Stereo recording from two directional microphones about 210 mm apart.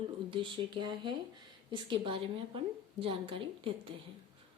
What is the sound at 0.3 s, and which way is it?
Speech, 25° right (ahead or behind).